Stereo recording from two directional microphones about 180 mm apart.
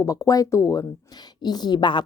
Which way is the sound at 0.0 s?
20° left (ahead or behind).